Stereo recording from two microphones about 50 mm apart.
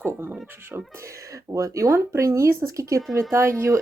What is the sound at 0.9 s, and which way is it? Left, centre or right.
Speech, right.